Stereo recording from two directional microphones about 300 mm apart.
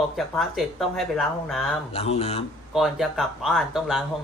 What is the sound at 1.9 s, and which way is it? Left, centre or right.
Speech, centre.